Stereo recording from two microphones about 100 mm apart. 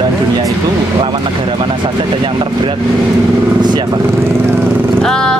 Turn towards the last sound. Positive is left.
turn(degrees=5)  # may be behind; listen again after turning